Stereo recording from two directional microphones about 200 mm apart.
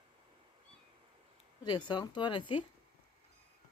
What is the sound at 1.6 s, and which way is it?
Speech, 20° left (ahead or behind).